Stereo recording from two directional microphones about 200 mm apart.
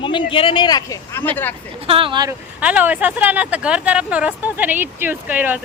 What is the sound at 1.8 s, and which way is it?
Speech, 25° right (ahead or behind).